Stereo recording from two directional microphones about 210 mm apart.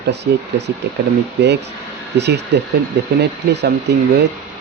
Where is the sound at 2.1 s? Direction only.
55° right (ahead or behind).